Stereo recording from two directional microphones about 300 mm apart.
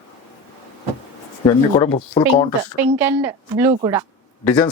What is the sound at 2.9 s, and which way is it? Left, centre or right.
A woman's voice, centre.